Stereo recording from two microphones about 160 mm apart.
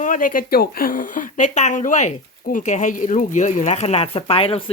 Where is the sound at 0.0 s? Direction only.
55° left (ahead or behind).